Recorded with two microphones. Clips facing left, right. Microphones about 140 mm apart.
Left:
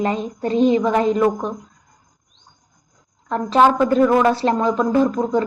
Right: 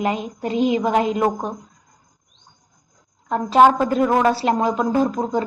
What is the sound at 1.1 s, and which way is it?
Speech, 10° right (ahead or behind).